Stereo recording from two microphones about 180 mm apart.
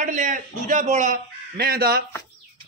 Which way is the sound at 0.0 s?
45° right (ahead or behind).